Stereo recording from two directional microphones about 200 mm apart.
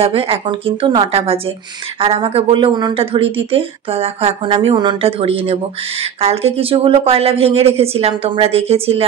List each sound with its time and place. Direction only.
0.0 s speech: 30° right (ahead or behind)